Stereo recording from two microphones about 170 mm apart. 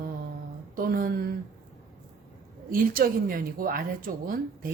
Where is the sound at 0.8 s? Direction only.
55° right (ahead or behind).